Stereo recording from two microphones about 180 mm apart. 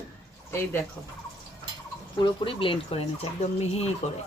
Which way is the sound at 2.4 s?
30° left (ahead or behind).